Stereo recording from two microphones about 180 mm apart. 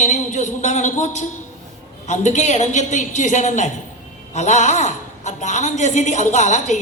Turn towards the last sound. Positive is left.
turn(degrees=40)  # may be behind; listen again after turning